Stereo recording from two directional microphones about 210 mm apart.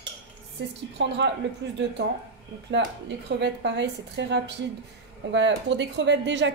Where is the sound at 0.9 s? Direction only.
55° right (ahead or behind).